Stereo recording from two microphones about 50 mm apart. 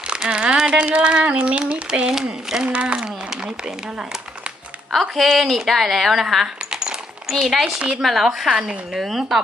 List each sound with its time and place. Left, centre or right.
0.3 s speech: centre
2.6 s speech: right
3.2 s a woman's voice: centre
4.9 s a woman's voice: centre
9.0 s speech: centre